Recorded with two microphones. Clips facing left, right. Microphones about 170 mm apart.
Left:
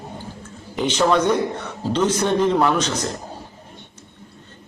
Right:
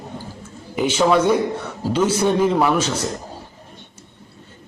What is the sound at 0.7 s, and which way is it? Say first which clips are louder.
A man's voice: right 2 dB; 5° right (ahead or behind).